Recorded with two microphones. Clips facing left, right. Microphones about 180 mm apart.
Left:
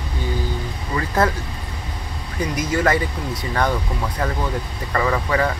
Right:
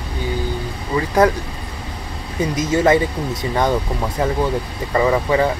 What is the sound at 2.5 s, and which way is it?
Speech, 25° right (ahead or behind).